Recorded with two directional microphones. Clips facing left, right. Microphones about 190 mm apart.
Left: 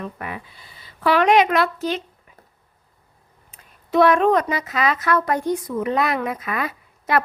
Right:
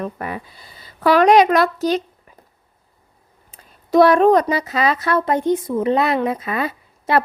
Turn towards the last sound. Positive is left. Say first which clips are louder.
# right 3 dB
turn(degrees=-30)  # may be behind; listen again after turning